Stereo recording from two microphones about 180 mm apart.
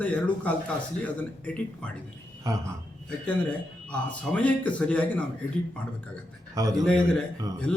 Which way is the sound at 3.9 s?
5° left (ahead or behind).